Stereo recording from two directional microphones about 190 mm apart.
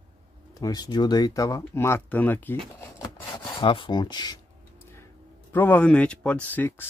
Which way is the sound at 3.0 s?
25° left (ahead or behind).